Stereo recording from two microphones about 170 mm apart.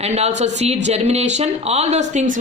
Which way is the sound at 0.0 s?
40° right (ahead or behind).